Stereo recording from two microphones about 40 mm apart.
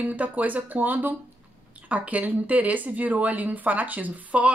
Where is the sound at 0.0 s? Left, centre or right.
Right.